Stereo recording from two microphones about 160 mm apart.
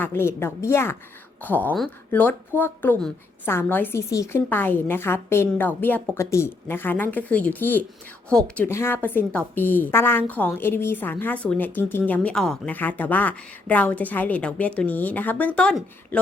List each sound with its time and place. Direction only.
0.0 s a woman's voice: 15° left (ahead or behind)